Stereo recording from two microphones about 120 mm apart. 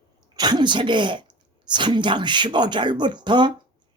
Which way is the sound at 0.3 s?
40° right (ahead or behind).